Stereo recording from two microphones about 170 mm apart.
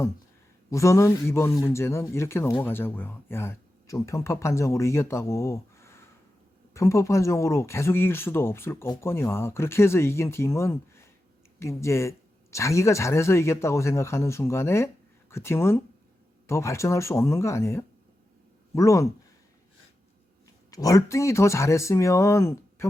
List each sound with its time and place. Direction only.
0.7 s speech: 15° left (ahead or behind)
20.7 s speech: 20° left (ahead or behind)